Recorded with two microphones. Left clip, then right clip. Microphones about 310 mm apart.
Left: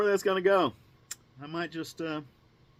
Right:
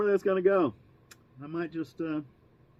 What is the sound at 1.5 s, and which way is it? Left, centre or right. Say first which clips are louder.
Speech: even; centre.